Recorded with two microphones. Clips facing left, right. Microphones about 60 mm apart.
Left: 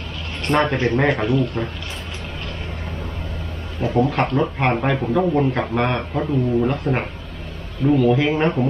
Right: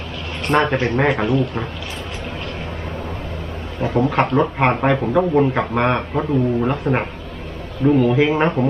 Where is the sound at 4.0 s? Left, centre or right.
Centre.